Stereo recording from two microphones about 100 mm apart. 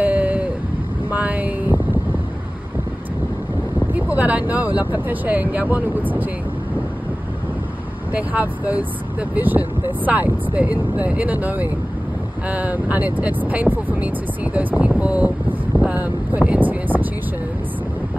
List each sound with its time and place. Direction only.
0.0 s a sound: 15° right (ahead or behind)
3.9 s speech: 15° right (ahead or behind)
8.1 s speech: 15° right (ahead or behind)